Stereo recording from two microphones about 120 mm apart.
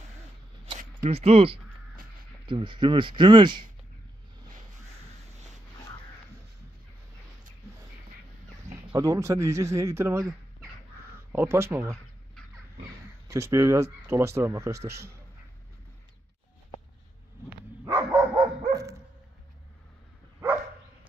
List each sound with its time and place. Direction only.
0.7 s speech: 55° right (ahead or behind); by 3.6 s 40° right (ahead or behind)
8.6 s speech: 30° right (ahead or behind)
11.3 s speech: 20° right (ahead or behind)
13.3 s speech: 25° right (ahead or behind)
17.5 s dog: 20° right (ahead or behind)
18.3 s dog: 30° right (ahead or behind)